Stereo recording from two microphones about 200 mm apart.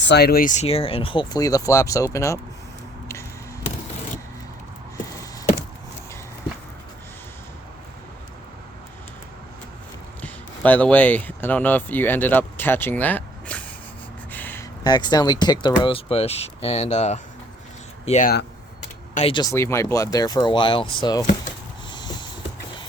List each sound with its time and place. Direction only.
0.0 s speech: 55° left (ahead or behind); by 2.4 s 15° left (ahead or behind)
10.2 s speech: 10° left (ahead or behind)
14.3 s a sound: 10° left (ahead or behind)
14.8 s speech: 20° left (ahead or behind)
19.3 s speech: 20° left (ahead or behind)
21.9 s a sound: 20° left (ahead or behind)